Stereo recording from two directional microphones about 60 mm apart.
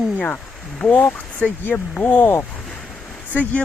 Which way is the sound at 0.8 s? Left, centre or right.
Left.